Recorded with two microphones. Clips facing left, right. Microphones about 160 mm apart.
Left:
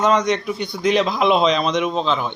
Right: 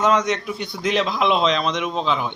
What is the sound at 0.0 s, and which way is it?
Speech, 5° right (ahead or behind).